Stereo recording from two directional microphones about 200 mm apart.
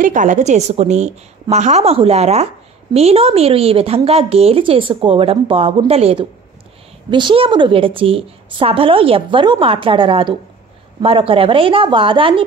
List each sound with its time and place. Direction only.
0.0 s a woman's voice: 40° right (ahead or behind)